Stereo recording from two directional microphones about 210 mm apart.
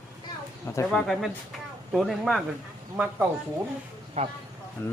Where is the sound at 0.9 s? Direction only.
Centre (ahead or behind).